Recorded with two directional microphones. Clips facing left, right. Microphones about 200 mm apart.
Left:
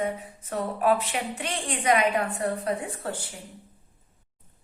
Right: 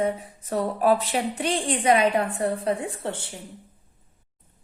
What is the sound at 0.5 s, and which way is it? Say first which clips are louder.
A woman's voice: right 3 dB; 35° right (ahead or behind).